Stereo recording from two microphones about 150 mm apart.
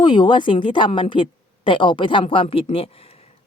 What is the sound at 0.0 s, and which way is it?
Speech, 30° left (ahead or behind).